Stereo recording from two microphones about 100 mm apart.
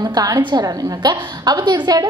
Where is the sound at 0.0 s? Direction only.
40° right (ahead or behind).